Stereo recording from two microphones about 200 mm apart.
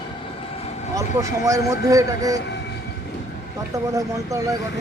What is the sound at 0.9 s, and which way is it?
Speech, 15° right (ahead or behind).